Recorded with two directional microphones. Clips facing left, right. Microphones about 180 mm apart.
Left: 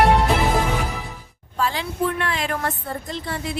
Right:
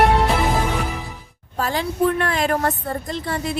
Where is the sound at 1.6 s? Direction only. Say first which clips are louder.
Right 3 dB; 45° right (ahead or behind).